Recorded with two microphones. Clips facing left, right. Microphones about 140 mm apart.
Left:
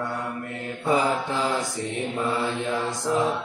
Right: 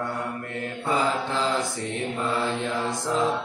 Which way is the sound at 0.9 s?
20° left (ahead or behind).